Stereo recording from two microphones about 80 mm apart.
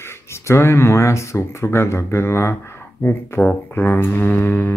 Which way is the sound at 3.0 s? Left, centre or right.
Left.